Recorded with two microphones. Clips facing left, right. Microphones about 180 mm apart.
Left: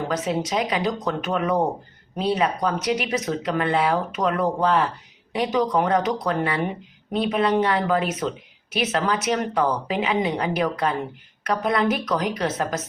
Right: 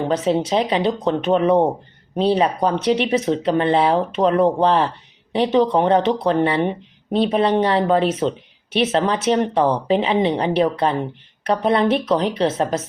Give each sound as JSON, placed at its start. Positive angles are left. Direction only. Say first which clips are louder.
{"t": 0.1, "sound": "speech", "louder": "right 7 dB", "side_deg": -30}